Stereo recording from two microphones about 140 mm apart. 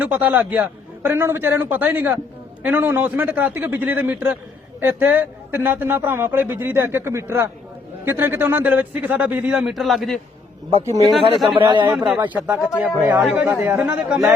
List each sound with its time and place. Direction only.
0.0 s a man's voice: 10° right (ahead or behind)
11.4 s speech: 35° right (ahead or behind)
12.1 s a man's voice: 10° right (ahead or behind)